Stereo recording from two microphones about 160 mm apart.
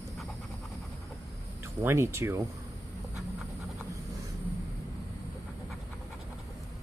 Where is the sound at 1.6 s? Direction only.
15° right (ahead or behind).